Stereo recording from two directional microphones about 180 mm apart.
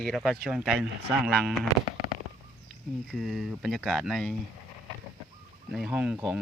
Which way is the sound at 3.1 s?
Centre (ahead or behind).